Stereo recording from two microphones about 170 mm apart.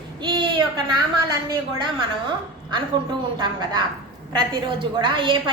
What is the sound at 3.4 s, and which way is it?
A woman's voice, 25° right (ahead or behind).